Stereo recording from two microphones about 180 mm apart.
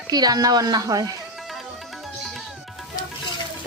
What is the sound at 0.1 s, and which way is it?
Speech, 20° right (ahead or behind).